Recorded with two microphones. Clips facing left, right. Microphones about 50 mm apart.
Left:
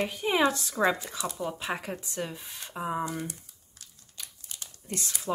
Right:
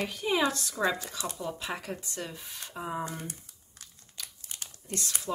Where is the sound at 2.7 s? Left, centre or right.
Centre.